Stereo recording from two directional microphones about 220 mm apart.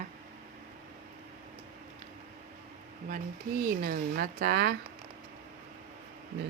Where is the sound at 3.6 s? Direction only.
40° right (ahead or behind).